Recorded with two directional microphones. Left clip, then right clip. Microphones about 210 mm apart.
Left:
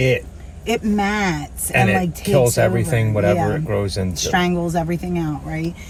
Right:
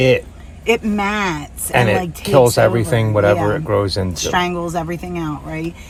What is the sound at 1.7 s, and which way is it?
Speech, 30° right (ahead or behind).